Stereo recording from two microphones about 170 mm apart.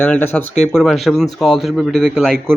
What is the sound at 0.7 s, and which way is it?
A man's voice, centre (ahead or behind).